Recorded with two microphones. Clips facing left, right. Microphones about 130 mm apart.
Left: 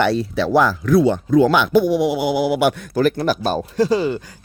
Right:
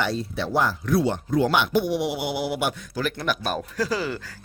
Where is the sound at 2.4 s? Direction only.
90° left.